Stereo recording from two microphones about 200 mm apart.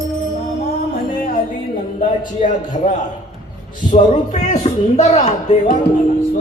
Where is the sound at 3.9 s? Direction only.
35° left (ahead or behind).